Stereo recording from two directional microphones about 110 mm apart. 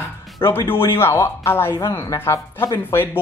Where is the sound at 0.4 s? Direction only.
20° left (ahead or behind).